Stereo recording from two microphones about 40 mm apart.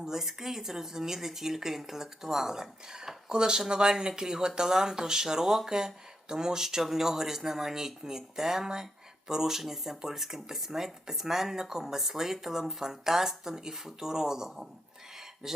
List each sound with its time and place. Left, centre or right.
0.0 s speech: centre